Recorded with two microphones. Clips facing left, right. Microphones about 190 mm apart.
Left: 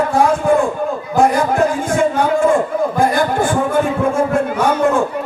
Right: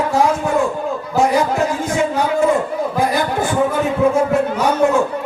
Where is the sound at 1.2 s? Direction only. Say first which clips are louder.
Left 2 dB; 50° left (ahead or behind).